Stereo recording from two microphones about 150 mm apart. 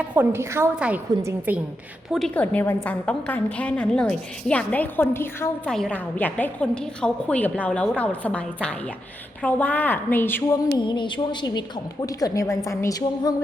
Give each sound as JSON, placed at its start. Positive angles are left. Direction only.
{"t": 0.1, "sound": "a woman's voice", "side_deg": -15}
{"t": 2.1, "sound": "a woman's voice", "side_deg": 5}
{"t": 5.6, "sound": "a woman's voice", "side_deg": 5}
{"t": 10.8, "sound": "a woman's voice", "side_deg": 30}